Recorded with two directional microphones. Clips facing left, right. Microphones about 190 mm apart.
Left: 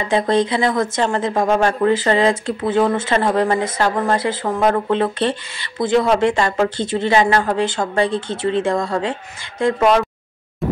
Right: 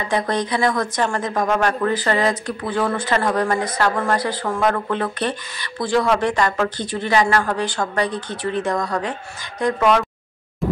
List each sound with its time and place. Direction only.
0.1 s a woman's voice: 25° left (ahead or behind)